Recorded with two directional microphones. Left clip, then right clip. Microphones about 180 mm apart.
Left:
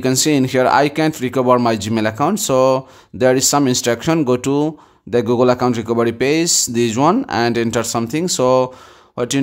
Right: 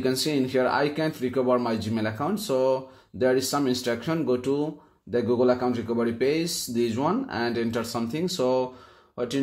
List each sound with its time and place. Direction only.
0.0 s speech: 35° left (ahead or behind)